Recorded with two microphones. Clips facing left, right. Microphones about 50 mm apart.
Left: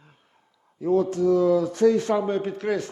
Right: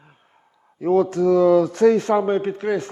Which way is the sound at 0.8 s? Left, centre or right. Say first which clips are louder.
Right 4 dB; right.